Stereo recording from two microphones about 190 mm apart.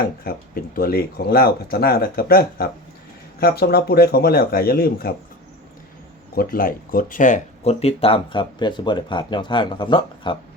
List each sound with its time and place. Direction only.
0.5 s speech: 50° left (ahead or behind)
6.3 s speech: 50° left (ahead or behind); by 10.3 s 25° left (ahead or behind)